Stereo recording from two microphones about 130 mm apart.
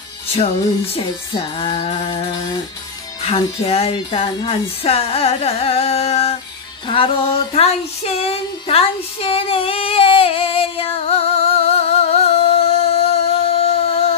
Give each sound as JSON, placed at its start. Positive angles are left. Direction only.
{"t": 0.9, "sound": "music", "side_deg": 40}
{"t": 3.3, "sound": "speech", "side_deg": 45}
{"t": 6.9, "sound": "child singing", "side_deg": 45}